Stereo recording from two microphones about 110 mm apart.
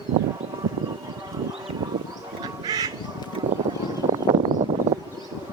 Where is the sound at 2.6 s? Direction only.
35° right (ahead or behind).